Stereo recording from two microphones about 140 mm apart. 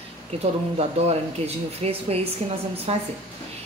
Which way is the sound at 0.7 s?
50° right (ahead or behind).